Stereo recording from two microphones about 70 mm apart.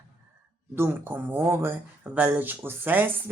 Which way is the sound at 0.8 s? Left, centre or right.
Right.